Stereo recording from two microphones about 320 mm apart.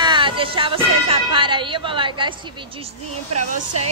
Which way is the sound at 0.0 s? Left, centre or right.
Centre.